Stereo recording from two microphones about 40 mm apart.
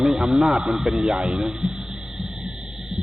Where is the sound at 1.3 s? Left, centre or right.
Right.